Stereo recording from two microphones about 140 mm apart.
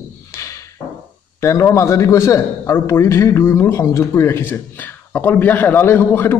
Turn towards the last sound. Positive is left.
turn(degrees=15)  # may be behind; listen again after turning